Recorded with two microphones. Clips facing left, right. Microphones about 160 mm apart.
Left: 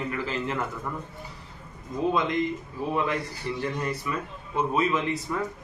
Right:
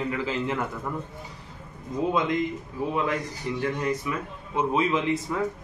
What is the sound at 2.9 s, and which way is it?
Speech, 15° right (ahead or behind).